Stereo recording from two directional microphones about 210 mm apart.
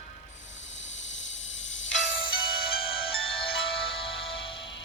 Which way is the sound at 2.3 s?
25° left (ahead or behind).